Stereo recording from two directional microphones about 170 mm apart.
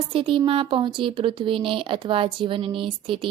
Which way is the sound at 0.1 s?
30° right (ahead or behind).